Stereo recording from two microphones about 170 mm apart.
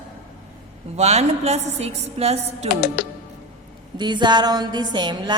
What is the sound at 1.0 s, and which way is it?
A woman's voice, 40° right (ahead or behind).